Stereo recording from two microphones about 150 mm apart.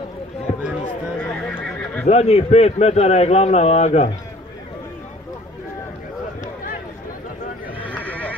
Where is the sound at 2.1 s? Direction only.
45° left (ahead or behind).